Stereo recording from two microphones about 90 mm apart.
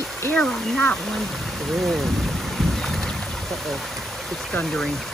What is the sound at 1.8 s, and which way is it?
Boat, centre (ahead or behind).